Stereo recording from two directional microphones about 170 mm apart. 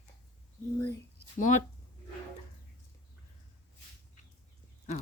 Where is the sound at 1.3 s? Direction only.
45° left (ahead or behind).